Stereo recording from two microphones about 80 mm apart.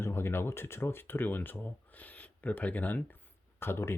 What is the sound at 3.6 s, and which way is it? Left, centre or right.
Speech, left.